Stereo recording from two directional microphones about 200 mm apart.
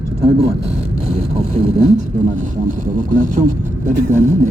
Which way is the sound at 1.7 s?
35° right (ahead or behind).